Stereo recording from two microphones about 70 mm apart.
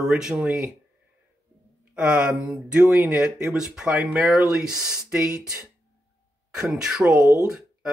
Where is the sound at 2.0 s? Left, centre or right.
Centre.